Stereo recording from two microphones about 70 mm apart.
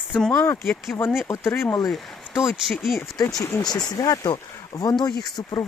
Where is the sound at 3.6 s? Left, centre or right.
Left.